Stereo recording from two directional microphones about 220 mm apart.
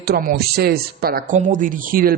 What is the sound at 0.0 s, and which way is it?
A man's voice, 45° right (ahead or behind).